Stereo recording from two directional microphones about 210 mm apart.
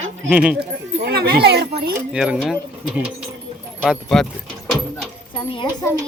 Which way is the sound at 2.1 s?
5° right (ahead or behind).